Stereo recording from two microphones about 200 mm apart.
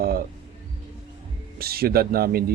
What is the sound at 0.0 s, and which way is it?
Music, 45° right (ahead or behind).